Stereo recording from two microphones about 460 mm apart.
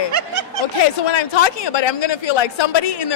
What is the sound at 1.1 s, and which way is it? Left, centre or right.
Speech, left.